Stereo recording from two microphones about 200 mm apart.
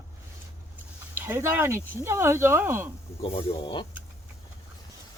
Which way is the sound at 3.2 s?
25° left (ahead or behind).